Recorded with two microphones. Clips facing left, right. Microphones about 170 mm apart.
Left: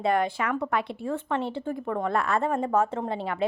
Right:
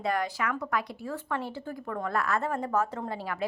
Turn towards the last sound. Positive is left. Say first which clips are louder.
# left 5 dB
turn(degrees=25)  # may be behind; listen again after turning